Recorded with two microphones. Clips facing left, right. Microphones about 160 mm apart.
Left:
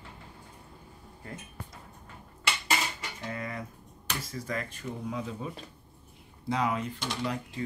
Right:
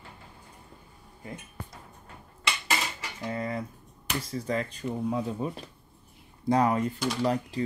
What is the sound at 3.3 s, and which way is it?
Speech, 30° right (ahead or behind).